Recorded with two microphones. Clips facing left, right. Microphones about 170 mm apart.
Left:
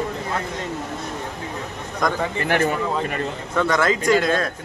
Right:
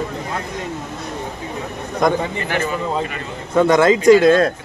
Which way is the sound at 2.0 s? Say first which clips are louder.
Right 6 dB; 25° right (ahead or behind).